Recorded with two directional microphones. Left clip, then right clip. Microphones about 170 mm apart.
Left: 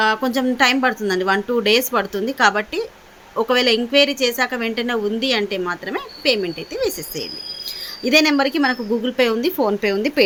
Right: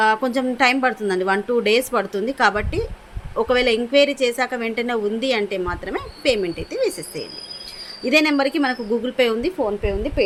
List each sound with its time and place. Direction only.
0.0 s a woman's voice: 5° left (ahead or behind)
9.6 s a woman's voice: 30° left (ahead or behind)